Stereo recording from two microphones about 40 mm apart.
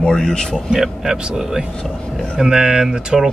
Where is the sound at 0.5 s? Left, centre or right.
Centre.